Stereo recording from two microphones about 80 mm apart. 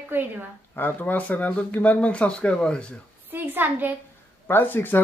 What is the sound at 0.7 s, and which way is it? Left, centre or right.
Speech, left.